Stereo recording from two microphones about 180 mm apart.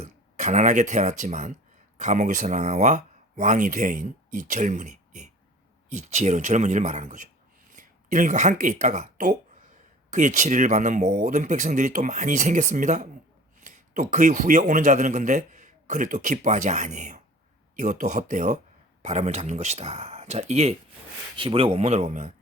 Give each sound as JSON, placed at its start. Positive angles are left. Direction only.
{"t": 0.0, "sound": "a man's voice", "side_deg": -40}